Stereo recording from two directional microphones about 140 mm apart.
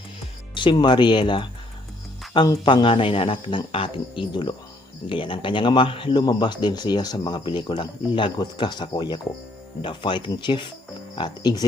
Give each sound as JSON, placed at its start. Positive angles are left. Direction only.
{"t": 0.5, "sound": "speech", "side_deg": 35}